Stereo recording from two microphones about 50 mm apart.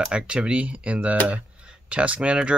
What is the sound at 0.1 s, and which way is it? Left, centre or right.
Speech, right.